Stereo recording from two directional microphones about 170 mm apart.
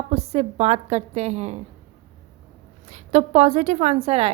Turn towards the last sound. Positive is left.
turn(degrees=-35)  # may be behind; listen again after turning